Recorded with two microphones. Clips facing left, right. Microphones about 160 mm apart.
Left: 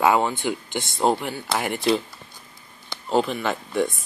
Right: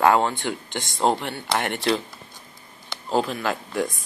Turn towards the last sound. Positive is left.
turn(degrees=0)  # may be behind; listen again after turning